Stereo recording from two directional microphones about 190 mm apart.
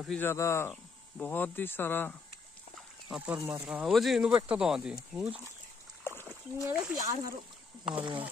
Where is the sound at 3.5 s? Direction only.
10° right (ahead or behind).